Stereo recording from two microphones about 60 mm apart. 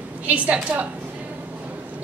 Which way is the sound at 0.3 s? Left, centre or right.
Right.